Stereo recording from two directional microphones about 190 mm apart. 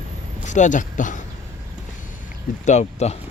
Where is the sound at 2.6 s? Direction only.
40° left (ahead or behind).